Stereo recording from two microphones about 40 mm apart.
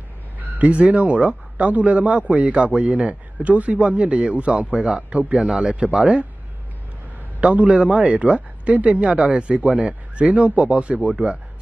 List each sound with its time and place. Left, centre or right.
0.6 s a man's voice: right
5.5 s speech: centre
7.7 s a man's voice: right
9.0 s a man's voice: right